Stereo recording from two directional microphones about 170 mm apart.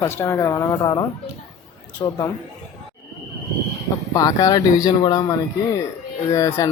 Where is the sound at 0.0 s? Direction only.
15° left (ahead or behind).